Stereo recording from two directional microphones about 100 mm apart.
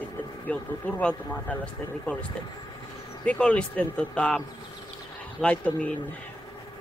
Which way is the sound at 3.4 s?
10° left (ahead or behind).